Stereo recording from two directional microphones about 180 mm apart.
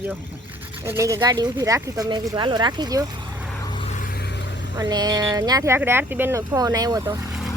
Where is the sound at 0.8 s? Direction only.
15° right (ahead or behind).